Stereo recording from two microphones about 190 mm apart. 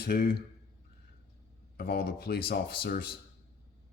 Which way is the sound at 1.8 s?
55° left (ahead or behind).